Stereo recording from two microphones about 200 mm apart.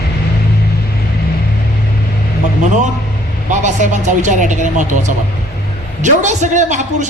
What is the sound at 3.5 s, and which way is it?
A man's voice, 40° right (ahead or behind).